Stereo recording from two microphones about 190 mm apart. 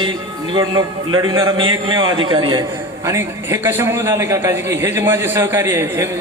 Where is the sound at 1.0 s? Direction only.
90° right.